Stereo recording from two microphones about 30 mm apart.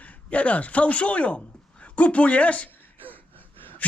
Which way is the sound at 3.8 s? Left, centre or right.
Left.